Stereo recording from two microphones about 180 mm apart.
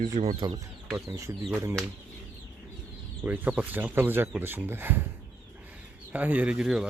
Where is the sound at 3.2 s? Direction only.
10° right (ahead or behind).